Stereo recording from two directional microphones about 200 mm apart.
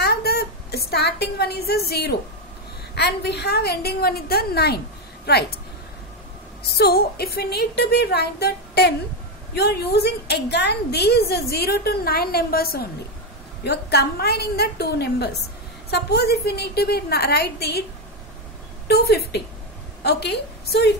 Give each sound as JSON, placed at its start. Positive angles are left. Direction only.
{"t": 0.0, "sound": "a sound", "side_deg": 50}
{"t": 2.9, "sound": "a woman's voice", "side_deg": 55}
{"t": 6.8, "sound": "a woman's voice", "side_deg": 50}
{"t": 18.9, "sound": "a woman's voice", "side_deg": 50}